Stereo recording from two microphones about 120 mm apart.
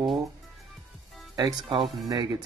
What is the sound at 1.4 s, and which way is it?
Speech, 45° right (ahead or behind).